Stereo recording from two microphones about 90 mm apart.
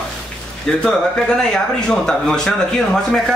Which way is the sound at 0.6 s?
10° left (ahead or behind).